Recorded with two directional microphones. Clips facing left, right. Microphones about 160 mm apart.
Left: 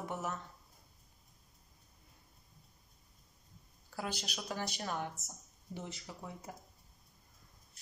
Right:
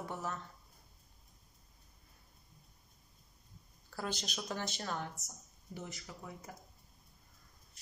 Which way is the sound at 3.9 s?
10° left (ahead or behind).